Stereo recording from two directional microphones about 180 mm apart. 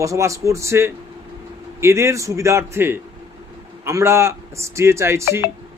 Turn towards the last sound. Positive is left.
turn(degrees=-15)  # may be behind; listen again after turning